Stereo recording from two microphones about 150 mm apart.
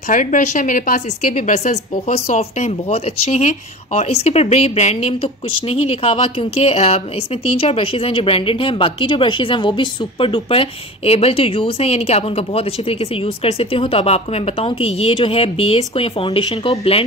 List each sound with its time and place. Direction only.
0.1 s a woman's voice: 55° left (ahead or behind); by 16.7 s 35° left (ahead or behind)